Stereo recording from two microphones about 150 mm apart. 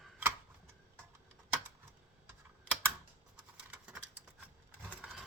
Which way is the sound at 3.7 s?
10° right (ahead or behind).